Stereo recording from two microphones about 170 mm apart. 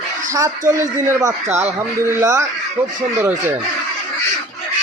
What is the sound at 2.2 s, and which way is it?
Speech, 20° right (ahead or behind).